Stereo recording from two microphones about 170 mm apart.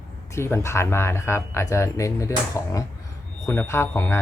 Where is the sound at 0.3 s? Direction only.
15° left (ahead or behind).